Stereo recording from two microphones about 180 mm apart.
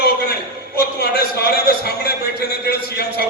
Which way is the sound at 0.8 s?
60° left (ahead or behind).